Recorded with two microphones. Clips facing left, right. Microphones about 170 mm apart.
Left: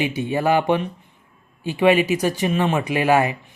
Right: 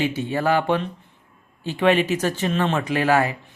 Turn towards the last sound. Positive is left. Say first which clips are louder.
# left 2 dB
turn(degrees=15)  # may be behind; listen again after turning